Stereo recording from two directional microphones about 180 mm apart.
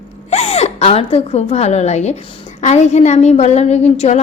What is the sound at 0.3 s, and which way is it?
A woman's voice, 35° left (ahead or behind).